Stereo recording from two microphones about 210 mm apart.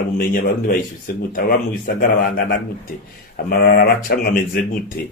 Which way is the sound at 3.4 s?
45° left (ahead or behind).